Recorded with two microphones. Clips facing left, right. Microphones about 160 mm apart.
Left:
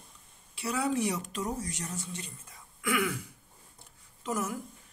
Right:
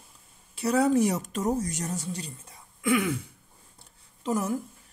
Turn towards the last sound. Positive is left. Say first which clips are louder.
# right 5 dB
turn(degrees=-30)  # may be behind; listen again after turning